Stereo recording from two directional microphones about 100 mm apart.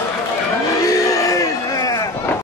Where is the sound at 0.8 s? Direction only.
35° left (ahead or behind).